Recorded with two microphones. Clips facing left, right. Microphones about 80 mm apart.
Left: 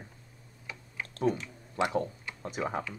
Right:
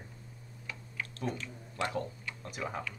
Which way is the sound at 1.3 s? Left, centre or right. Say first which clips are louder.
Left 6 dB; centre.